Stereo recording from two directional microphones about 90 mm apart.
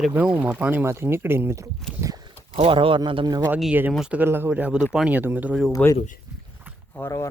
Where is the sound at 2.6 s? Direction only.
85° right; by 3.2 s 70° right (ahead or behind).